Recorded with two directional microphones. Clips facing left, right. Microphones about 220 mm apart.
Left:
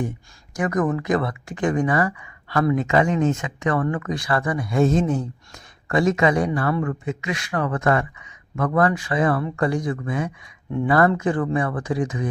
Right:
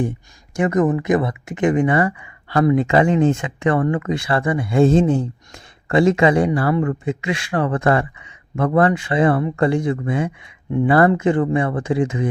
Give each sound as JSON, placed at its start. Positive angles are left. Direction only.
{"t": 0.5, "sound": "speech", "side_deg": -25}